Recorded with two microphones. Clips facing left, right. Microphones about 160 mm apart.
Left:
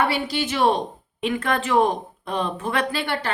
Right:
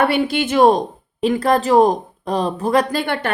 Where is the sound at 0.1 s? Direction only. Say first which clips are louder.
Right 7 dB; 55° right (ahead or behind).